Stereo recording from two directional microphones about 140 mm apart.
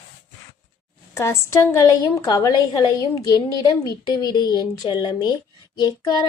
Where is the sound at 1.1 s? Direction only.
20° left (ahead or behind).